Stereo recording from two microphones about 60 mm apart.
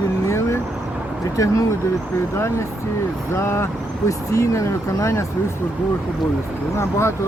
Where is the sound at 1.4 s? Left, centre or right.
Left.